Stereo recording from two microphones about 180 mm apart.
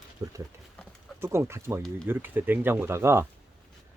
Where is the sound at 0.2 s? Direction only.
20° right (ahead or behind).